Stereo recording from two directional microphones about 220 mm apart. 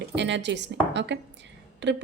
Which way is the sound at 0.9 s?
55° right (ahead or behind).